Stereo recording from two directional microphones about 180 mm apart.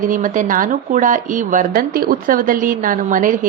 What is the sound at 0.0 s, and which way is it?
Speech, 45° right (ahead or behind).